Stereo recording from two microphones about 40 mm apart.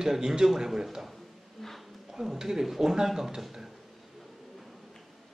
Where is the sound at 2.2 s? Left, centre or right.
Centre.